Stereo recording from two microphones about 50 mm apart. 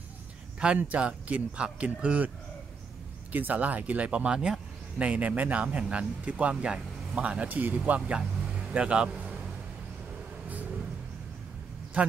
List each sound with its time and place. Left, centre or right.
0.6 s speech: right
8.7 s speech: right
12.0 s speech: right